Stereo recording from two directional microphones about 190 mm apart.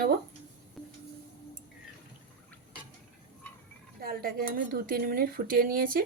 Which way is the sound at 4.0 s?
50° right (ahead or behind).